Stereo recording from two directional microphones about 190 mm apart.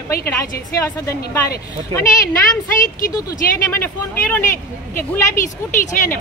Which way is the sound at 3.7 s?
10° left (ahead or behind).